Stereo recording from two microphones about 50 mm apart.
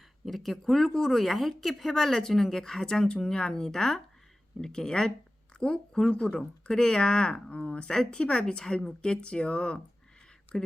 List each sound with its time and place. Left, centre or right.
0.3 s speech: centre